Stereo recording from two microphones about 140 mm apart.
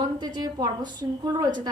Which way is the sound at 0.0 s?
30° right (ahead or behind).